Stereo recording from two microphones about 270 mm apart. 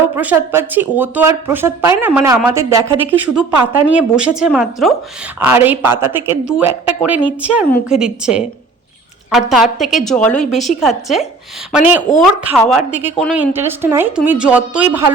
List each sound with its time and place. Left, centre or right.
0.0 s speech: centre
10.2 s a woman's voice: left
10.4 s speech: centre